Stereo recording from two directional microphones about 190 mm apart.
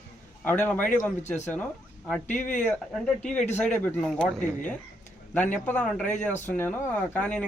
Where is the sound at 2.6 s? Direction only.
5° left (ahead or behind).